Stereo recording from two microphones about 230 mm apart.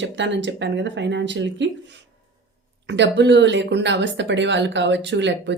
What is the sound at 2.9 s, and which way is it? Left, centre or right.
Speech, right.